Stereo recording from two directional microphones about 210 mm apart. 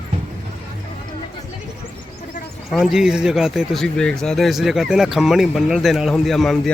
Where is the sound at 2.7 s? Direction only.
Centre (ahead or behind).